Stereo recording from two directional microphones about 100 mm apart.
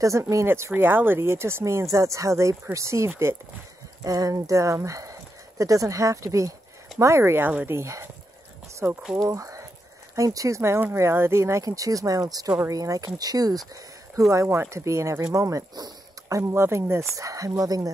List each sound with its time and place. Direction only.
0.0 s speech: 30° right (ahead or behind)
9.2 s speech: 35° right (ahead or behind)
14.3 s speech: 25° right (ahead or behind)